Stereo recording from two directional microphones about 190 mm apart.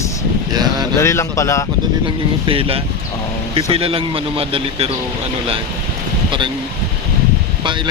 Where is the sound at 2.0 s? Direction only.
30° right (ahead or behind).